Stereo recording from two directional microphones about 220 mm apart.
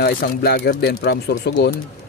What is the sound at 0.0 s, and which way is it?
Speech, 45° left (ahead or behind).